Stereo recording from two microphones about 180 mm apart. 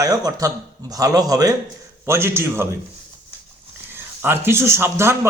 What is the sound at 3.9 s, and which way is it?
Speech, 10° right (ahead or behind).